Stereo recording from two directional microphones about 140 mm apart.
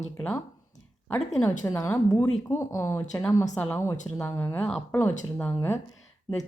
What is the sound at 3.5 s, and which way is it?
Speech, 10° left (ahead or behind).